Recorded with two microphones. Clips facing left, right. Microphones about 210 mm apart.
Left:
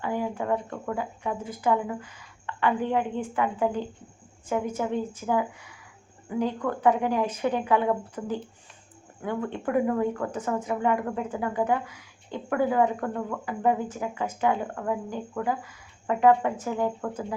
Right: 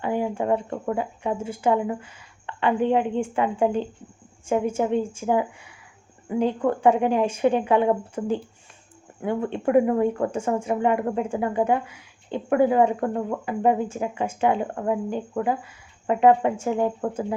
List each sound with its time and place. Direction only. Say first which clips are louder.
0.0 s speech: right 4 dB; 20° right (ahead or behind)